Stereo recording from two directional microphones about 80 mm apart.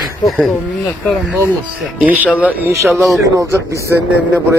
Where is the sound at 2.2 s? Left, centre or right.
Centre.